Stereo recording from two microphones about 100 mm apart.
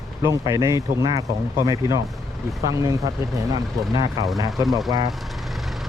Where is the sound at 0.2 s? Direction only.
35° right (ahead or behind).